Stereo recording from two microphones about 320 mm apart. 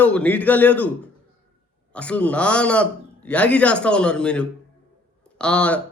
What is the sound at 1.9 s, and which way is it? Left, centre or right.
A man's voice, centre.